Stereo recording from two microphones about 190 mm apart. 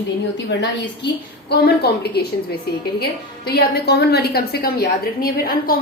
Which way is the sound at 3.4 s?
55° left (ahead or behind).